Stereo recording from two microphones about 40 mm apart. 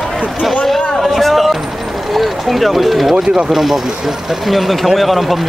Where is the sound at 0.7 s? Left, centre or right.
Centre.